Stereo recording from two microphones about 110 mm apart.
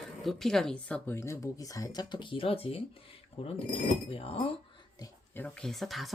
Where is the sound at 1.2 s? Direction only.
25° left (ahead or behind).